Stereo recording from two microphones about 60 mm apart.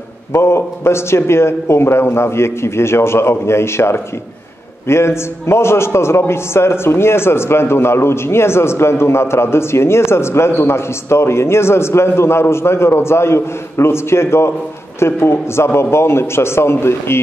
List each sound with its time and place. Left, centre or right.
0.3 s a man's voice: left